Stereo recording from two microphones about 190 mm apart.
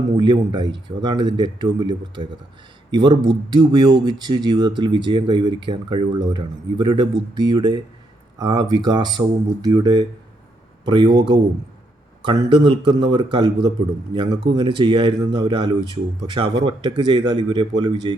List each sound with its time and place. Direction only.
0.2 s speech: 25° right (ahead or behind)